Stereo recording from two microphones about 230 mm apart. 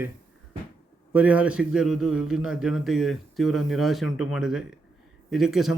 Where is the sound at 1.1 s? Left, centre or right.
Centre.